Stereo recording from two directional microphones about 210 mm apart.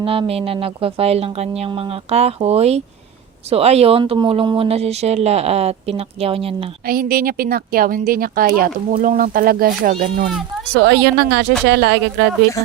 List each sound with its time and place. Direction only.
0.0 s speech: 25° right (ahead or behind)
6.8 s a woman's voice: 45° right (ahead or behind)
10.8 s a woman's voice: 55° right (ahead or behind)